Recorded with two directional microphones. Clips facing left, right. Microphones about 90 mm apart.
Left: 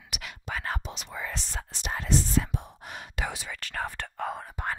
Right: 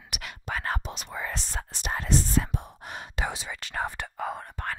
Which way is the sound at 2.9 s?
30° right (ahead or behind).